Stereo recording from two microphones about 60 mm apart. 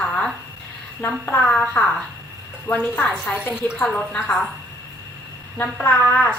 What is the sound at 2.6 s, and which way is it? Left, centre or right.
Speech, left.